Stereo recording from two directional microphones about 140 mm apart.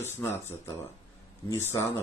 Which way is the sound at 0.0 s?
20° left (ahead or behind).